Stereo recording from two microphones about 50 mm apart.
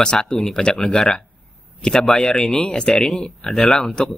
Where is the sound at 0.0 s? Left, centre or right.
Centre.